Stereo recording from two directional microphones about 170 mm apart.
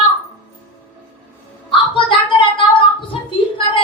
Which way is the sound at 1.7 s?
30° left (ahead or behind).